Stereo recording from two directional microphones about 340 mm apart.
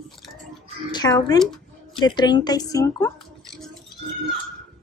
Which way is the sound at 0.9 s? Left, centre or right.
Centre.